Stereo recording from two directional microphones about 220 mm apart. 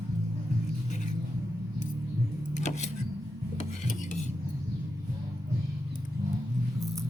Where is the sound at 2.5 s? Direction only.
30° left (ahead or behind).